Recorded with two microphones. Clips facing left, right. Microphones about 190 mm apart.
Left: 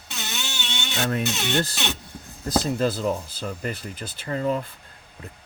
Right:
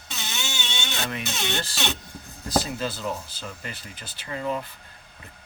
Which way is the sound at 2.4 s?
50° left (ahead or behind).